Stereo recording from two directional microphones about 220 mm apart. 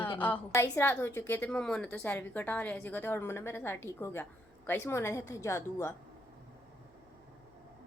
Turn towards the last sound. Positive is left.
turn(degrees=10)  # may be behind; listen again after turning